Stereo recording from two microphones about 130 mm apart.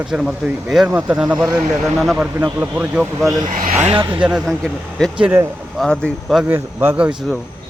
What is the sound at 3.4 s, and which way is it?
Speech, 85° right.